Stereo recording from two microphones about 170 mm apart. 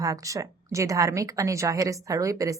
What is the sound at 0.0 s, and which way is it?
A woman's voice, 20° right (ahead or behind).